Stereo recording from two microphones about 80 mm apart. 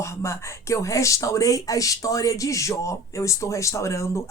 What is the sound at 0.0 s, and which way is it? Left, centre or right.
Speech, left.